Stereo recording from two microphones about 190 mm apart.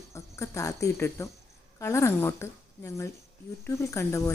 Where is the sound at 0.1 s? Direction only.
15° left (ahead or behind).